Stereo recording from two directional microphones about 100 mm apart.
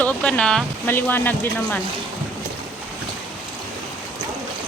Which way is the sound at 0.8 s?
20° left (ahead or behind).